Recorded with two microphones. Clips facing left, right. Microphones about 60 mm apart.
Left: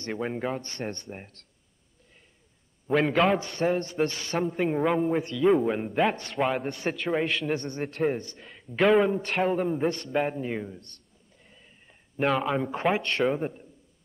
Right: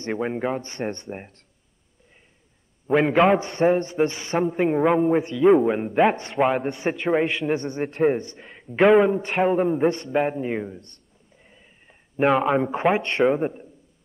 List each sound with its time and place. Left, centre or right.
0.2 s a man's voice: centre
2.9 s a man's voice: centre
3.4 s a man's voice: right
3.7 s a man's voice: centre
8.1 s speech: right
8.8 s a man's voice: centre
10.0 s a man's voice: centre
11.3 s a sound: centre
12.6 s a man's voice: centre
12.9 s a man's voice: right
13.2 s a man's voice: centre